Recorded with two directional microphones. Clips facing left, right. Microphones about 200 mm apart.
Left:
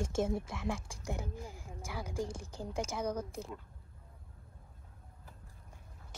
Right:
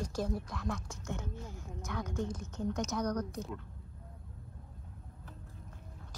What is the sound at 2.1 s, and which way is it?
Speech, 30° left (ahead or behind).